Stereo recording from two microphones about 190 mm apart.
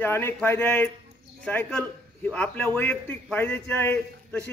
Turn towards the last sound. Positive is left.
turn(degrees=10)  # may be behind; listen again after turning